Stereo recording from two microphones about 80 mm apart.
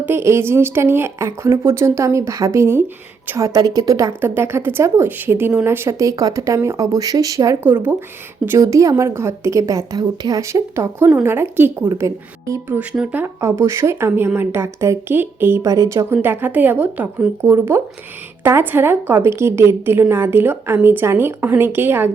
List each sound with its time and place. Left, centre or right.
0.0 s a woman's voice: right
3.3 s a woman's voice: right
4.2 s a woman's voice: right
7.6 s a woman's voice: right
8.5 s a woman's voice: right
10.0 s speech: right
10.4 s a woman's voice: right
12.6 s a woman's voice: right
12.9 s speech: centre
13.1 s a woman's voice: right
15.6 s a woman's voice: right
16.1 s a woman's voice: right
17.4 s a woman's voice: right